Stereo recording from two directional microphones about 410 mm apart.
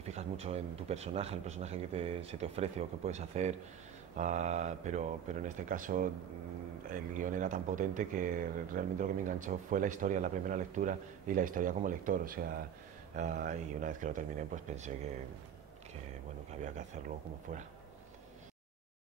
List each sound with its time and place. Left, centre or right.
0.0 s speech: centre
16.6 s speech: centre